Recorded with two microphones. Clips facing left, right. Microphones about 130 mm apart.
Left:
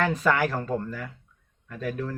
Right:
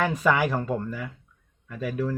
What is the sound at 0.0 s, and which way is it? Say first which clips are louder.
Speech: right 1 dB; 10° right (ahead or behind).